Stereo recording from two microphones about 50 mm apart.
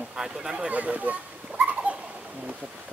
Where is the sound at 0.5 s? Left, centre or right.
Right.